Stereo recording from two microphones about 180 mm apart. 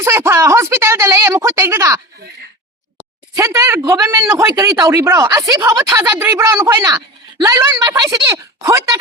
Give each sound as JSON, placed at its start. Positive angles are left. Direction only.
{"t": 0.0, "sound": "speech", "side_deg": -15}
{"t": 3.3, "sound": "speech", "side_deg": -15}